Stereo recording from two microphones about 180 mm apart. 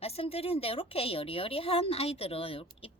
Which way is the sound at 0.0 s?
35° left (ahead or behind).